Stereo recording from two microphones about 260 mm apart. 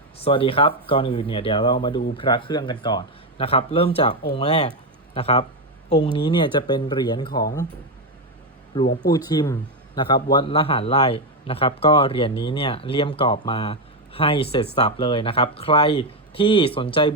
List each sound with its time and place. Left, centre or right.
0.3 s a man's voice: left
9.0 s a man's voice: centre